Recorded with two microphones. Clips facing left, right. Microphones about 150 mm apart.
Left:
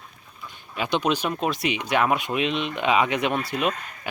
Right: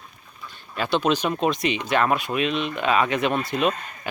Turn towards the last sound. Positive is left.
turn(degrees=10)  # may be behind; listen again after turning